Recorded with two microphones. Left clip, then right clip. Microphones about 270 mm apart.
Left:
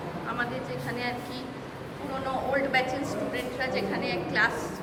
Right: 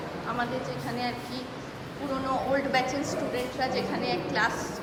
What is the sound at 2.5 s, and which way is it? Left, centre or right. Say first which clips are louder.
A woman's voice: left 2 dB; centre.